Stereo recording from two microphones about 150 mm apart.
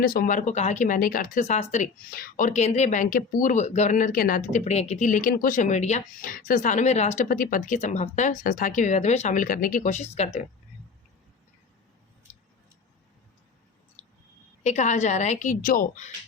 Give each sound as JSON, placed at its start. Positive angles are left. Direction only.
{"t": 0.0, "sound": "speech", "side_deg": 75}
{"t": 2.0, "sound": "speech", "side_deg": 75}
{"t": 6.2, "sound": "speech", "side_deg": 65}
{"t": 7.2, "sound": "speech", "side_deg": 70}
{"t": 14.6, "sound": "a woman's voice", "side_deg": 50}